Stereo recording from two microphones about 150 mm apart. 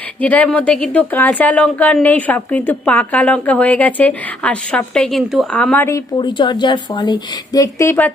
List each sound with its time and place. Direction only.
0.2 s speech: 10° left (ahead or behind)
5.9 s a woman's voice: 30° left (ahead or behind); by 8.1 s 15° left (ahead or behind)